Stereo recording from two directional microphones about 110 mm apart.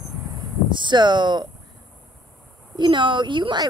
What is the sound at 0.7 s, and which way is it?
Speech, 45° right (ahead or behind).